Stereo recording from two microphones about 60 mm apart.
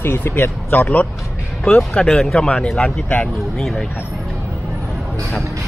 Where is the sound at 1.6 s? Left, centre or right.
Centre.